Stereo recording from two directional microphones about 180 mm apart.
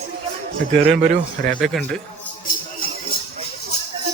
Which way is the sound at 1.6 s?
5° left (ahead or behind).